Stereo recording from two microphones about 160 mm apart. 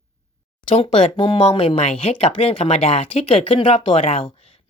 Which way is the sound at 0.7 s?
35° left (ahead or behind).